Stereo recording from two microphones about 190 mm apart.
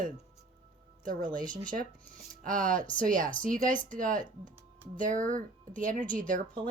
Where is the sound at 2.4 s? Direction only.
45° right (ahead or behind).